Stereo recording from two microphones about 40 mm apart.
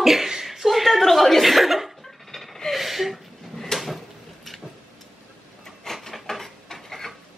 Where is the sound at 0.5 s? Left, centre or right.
Centre.